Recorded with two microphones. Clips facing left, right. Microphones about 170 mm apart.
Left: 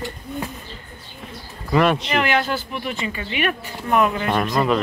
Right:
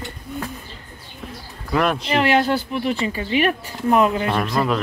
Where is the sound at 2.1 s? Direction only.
30° right (ahead or behind).